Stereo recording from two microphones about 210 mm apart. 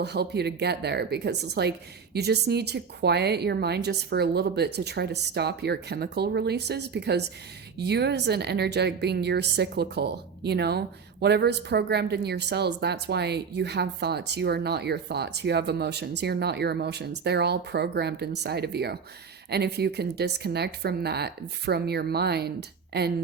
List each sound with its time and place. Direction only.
0.0 s a woman's voice: 50° right (ahead or behind)